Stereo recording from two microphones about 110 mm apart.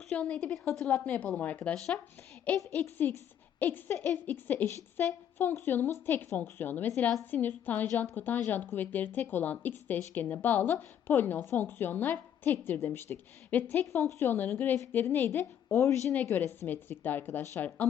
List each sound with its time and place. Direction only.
0.1 s a woman's voice: 10° left (ahead or behind)